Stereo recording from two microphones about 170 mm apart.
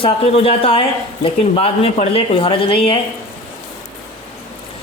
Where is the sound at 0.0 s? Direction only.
35° left (ahead or behind).